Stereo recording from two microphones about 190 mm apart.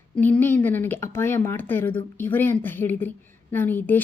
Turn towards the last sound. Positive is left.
turn(degrees=10)  # may be behind; listen again after turning